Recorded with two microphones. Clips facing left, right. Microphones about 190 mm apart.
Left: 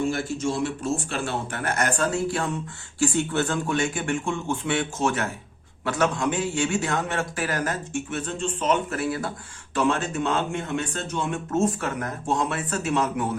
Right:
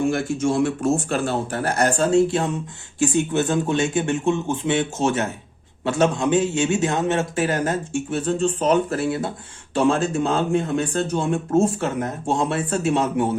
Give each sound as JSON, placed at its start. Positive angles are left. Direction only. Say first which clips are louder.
{"t": 0.0, "sound": "a man's voice", "louder": "right 4 dB", "side_deg": -55}